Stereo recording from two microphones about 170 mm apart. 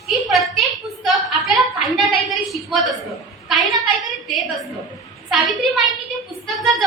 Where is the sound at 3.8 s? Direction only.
Centre (ahead or behind).